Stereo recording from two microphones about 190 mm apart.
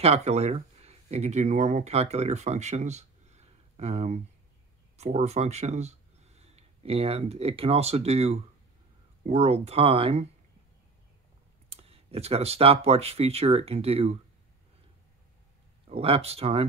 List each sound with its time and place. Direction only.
0.0 s speech: 35° right (ahead or behind)
11.7 s speech: 30° right (ahead or behind)
15.9 s speech: 30° right (ahead or behind)